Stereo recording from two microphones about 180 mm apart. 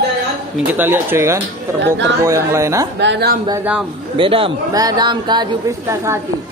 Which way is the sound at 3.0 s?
70° right (ahead or behind).